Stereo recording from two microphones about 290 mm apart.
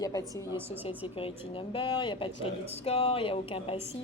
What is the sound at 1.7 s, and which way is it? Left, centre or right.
Speech, centre.